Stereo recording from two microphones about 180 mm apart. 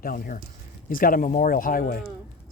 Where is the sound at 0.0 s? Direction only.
50° left (ahead or behind).